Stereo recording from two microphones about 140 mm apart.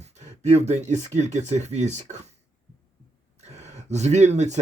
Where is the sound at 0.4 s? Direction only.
50° right (ahead or behind).